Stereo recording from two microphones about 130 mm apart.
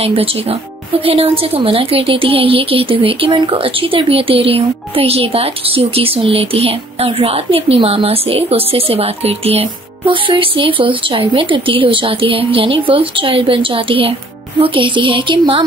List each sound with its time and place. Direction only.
0.0 s a woman's voice: 45° right (ahead or behind)